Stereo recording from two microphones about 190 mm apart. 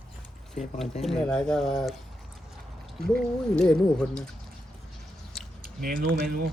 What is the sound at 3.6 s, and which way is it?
Speech, 5° left (ahead or behind).